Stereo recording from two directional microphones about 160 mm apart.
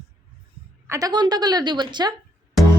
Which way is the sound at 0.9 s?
25° right (ahead or behind).